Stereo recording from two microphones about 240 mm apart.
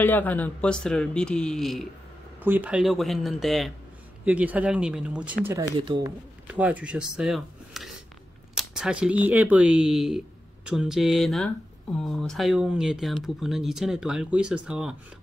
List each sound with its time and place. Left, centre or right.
0.0 s speech: centre
6.4 s speech: centre